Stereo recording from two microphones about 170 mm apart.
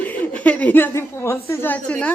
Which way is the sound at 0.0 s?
10° left (ahead or behind).